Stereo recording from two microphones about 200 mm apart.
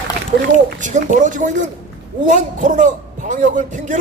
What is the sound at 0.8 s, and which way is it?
A man's voice, 40° right (ahead or behind).